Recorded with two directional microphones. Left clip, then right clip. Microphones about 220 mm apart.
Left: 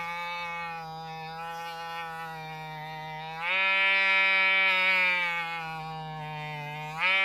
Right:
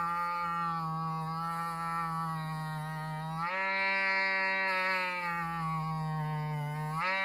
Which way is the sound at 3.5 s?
30° left (ahead or behind).